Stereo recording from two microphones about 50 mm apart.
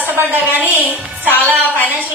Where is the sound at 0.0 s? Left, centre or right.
Right.